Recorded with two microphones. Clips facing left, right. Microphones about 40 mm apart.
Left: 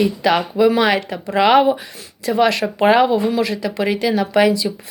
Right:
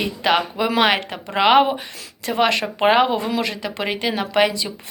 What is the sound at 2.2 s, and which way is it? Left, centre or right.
Speech, right.